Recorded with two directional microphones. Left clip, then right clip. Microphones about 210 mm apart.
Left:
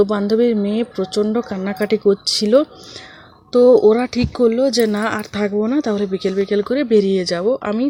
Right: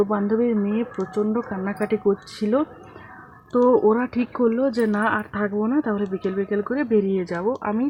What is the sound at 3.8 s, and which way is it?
Speech, 15° left (ahead or behind).